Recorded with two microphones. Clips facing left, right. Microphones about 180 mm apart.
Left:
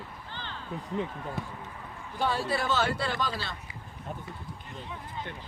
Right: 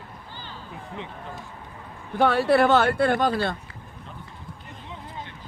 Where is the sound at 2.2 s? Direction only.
65° right (ahead or behind).